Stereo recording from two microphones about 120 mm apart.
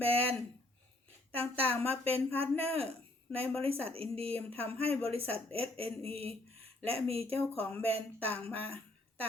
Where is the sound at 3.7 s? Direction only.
55° right (ahead or behind).